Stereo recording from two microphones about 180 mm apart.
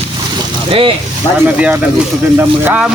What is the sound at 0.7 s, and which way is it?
Speech, 30° right (ahead or behind).